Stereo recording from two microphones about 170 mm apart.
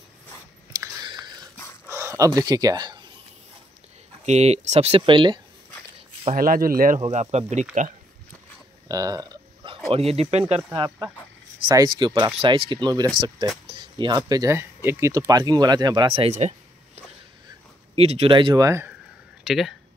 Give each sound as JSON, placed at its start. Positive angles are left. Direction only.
{"t": 1.0, "sound": "biting", "side_deg": -25}
{"t": 1.9, "sound": "speech", "side_deg": -15}
{"t": 4.3, "sound": "speech", "side_deg": -40}
{"t": 6.3, "sound": "speech", "side_deg": -55}
{"t": 7.0, "sound": "speech", "side_deg": -40}
{"t": 8.8, "sound": "dog", "side_deg": -20}
{"t": 9.8, "sound": "speech", "side_deg": -35}
{"t": 19.4, "sound": "speech", "side_deg": 0}